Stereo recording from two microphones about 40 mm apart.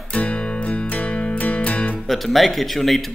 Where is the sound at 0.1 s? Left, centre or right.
Left.